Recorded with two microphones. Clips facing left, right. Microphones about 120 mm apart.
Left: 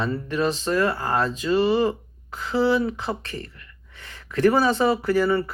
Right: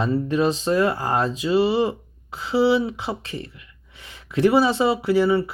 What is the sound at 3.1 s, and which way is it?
Speech, 10° right (ahead or behind).